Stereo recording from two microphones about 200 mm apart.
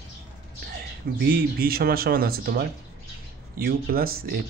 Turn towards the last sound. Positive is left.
turn(degrees=-50)  # may be behind; listen again after turning